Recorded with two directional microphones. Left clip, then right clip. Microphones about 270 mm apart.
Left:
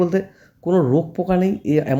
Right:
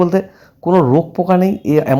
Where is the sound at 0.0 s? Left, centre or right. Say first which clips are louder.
Right 5 dB; centre.